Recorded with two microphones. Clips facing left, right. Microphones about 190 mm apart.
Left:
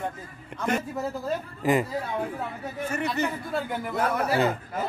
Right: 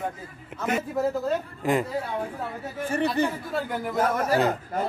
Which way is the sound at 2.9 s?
30° right (ahead or behind).